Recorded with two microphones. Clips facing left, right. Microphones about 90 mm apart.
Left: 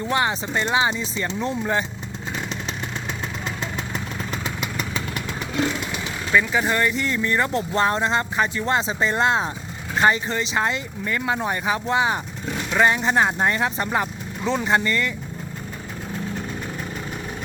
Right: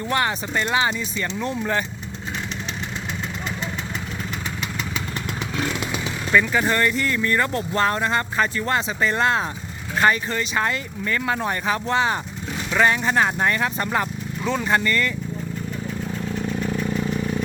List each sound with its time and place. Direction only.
0.0 s speech: 15° left (ahead or behind)
6.3 s speech: 10° left (ahead or behind)